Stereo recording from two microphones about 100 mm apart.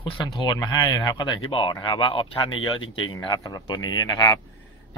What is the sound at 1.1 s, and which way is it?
Speech, 50° left (ahead or behind).